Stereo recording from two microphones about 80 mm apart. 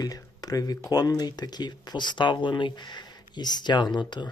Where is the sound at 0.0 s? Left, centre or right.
Left.